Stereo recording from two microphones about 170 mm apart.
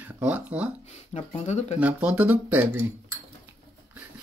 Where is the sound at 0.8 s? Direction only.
45° left (ahead or behind).